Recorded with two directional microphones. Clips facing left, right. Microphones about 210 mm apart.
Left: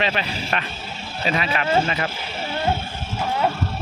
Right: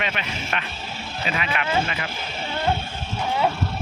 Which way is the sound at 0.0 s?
35° left (ahead or behind).